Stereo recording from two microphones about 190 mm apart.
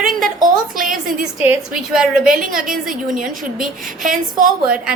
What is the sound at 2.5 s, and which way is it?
A woman's voice, 50° right (ahead or behind).